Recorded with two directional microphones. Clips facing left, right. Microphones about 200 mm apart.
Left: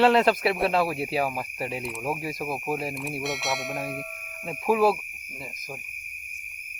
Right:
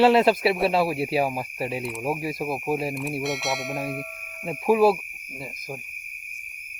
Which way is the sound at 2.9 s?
Centre (ahead or behind).